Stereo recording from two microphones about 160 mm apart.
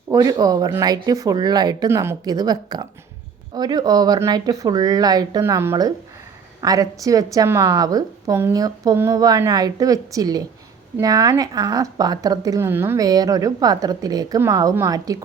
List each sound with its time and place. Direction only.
0.1 s speech: 20° right (ahead or behind)